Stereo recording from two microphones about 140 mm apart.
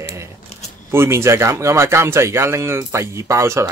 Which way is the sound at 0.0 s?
20° right (ahead or behind).